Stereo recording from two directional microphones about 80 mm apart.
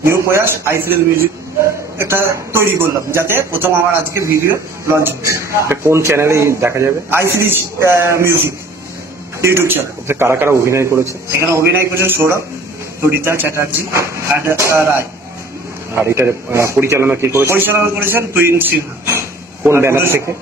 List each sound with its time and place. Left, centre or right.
0.0 s a man's voice: right
2.0 s a man's voice: right